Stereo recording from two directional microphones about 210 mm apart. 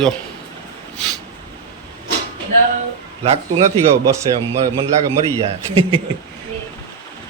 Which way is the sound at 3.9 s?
15° right (ahead or behind).